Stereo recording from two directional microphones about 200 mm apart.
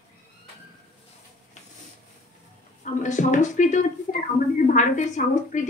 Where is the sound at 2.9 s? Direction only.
40° left (ahead or behind).